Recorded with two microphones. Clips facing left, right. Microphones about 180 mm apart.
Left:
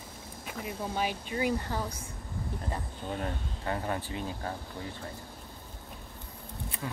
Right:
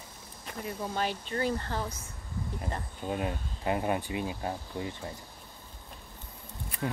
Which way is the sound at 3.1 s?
15° right (ahead or behind).